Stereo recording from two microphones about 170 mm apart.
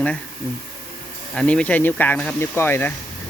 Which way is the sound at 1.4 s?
5° left (ahead or behind).